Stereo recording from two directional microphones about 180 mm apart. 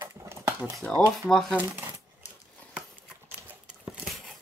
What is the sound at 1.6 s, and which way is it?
Speech, 10° right (ahead or behind).